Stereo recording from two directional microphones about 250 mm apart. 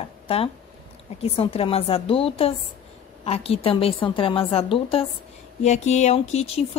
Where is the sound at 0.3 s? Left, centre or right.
Left.